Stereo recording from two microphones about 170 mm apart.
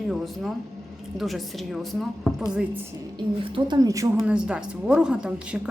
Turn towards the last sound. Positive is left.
turn(degrees=-5)  # may be behind; listen again after turning